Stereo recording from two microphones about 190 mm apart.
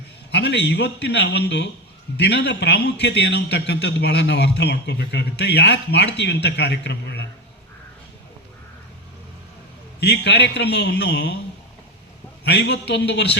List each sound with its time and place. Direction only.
0.3 s a man's voice: 65° left (ahead or behind)
10.0 s a man's voice: 65° left (ahead or behind)
12.5 s a man's voice: 65° left (ahead or behind)